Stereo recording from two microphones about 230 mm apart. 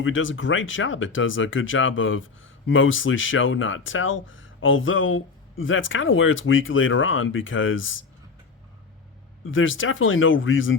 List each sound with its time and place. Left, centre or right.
0.0 s speech: left
9.4 s speech: left